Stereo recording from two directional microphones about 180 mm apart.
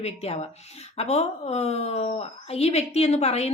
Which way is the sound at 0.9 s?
35° left (ahead or behind).